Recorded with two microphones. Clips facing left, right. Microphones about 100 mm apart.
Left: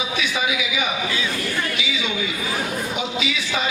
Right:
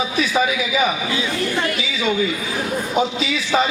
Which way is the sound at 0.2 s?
40° right (ahead or behind).